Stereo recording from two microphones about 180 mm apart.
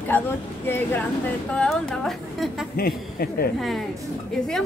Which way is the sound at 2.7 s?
55° left (ahead or behind).